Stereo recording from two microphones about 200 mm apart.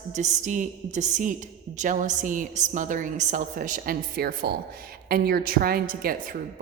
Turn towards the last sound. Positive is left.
turn(degrees=-45)  # may be behind; listen again after turning